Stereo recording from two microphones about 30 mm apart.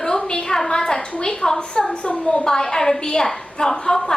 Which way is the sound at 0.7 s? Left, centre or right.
Left.